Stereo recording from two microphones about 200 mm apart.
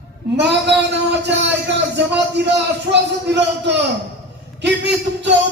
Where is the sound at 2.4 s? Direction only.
60° right (ahead or behind).